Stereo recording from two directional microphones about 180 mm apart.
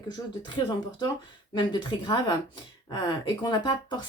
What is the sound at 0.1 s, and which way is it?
Speech, 25° left (ahead or behind).